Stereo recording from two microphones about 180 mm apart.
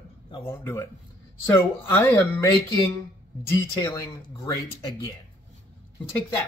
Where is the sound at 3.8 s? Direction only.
20° left (ahead or behind).